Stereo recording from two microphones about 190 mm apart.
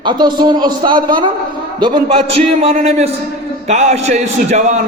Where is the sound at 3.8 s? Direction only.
35° right (ahead or behind).